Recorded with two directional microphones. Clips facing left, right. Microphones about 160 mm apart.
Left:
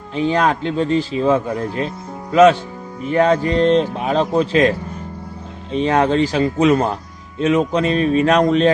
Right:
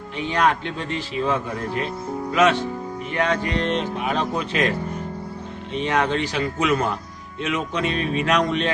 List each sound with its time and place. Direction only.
0.1 s speech: 35° left (ahead or behind)
5.7 s speech: 35° left (ahead or behind)